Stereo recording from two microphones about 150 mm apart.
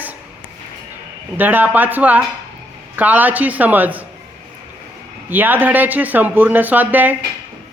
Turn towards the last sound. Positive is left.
turn(degrees=-10)  # may be behind; listen again after turning